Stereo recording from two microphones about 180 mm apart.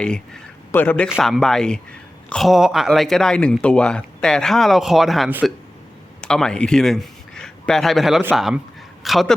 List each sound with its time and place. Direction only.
0.7 s speech: 10° left (ahead or behind)
1.0 s a man's voice: centre (ahead or behind)